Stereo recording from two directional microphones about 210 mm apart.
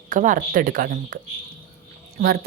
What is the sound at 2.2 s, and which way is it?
Speech, 45° right (ahead or behind).